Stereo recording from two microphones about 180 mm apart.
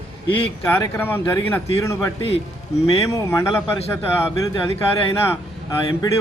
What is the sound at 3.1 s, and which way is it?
Speech, 15° left (ahead or behind).